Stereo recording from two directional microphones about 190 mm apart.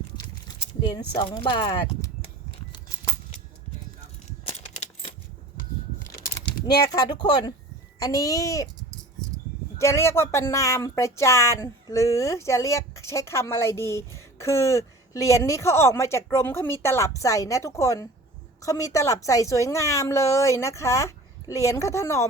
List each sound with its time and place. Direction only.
0.4 s a sound: 25° left (ahead or behind)
1.1 s speech: 25° left (ahead or behind)
4.4 s coin: 35° left (ahead or behind)
6.8 s speech: 20° left (ahead or behind)
9.7 s speech: 15° left (ahead or behind)